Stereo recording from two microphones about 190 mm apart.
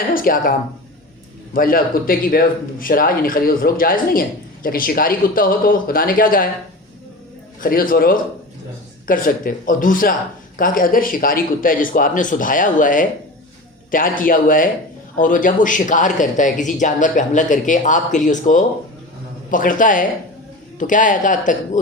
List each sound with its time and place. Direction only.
0.1 s speech: 45° left (ahead or behind)
1.5 s a man's voice: 50° left (ahead or behind)
7.6 s a man's voice: 50° left (ahead or behind)